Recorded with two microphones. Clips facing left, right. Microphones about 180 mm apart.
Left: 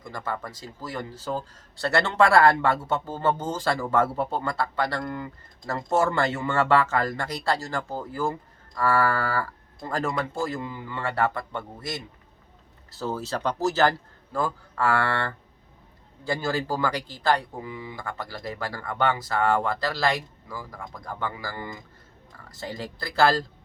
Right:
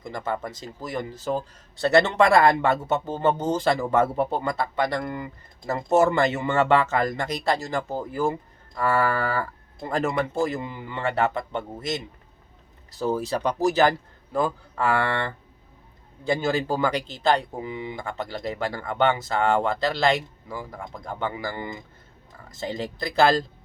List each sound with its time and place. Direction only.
0.0 s a man's voice: 20° right (ahead or behind)